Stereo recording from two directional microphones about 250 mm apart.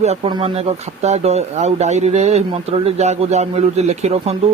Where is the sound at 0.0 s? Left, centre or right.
Right.